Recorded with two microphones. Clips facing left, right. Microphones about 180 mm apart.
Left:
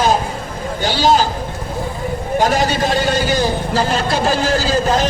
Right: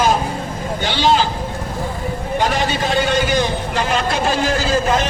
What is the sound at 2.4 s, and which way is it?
A man's voice, 45° left (ahead or behind).